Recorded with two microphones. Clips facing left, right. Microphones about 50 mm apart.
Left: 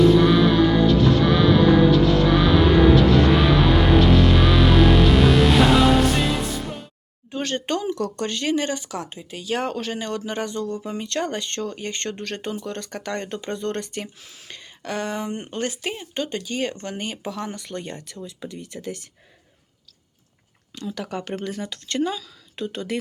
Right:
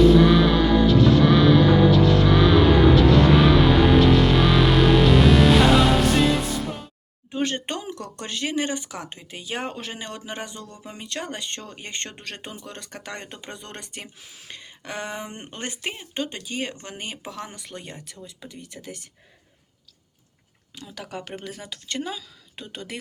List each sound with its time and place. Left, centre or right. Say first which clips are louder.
0.0 s music: even; centre
7.3 s speech: left 1 dB; centre
20.7 s speech: left 6 dB; centre